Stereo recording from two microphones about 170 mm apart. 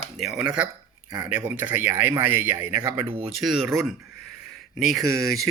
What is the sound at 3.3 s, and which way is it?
Speech, centre (ahead or behind).